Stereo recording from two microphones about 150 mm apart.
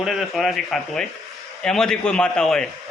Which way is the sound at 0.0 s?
Centre (ahead or behind).